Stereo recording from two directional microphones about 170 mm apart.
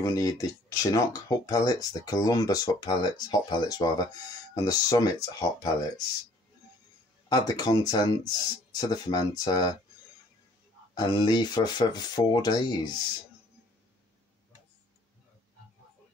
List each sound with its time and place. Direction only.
0.0 s speech: 20° left (ahead or behind)
7.2 s speech: 25° left (ahead or behind)
11.0 s speech: 25° left (ahead or behind)